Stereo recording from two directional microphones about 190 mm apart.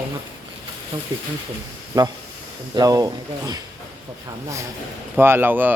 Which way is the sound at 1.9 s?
20° right (ahead or behind).